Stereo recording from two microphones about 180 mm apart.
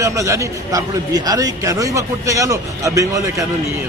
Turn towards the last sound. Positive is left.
turn(degrees=-20)  # may be behind; listen again after turning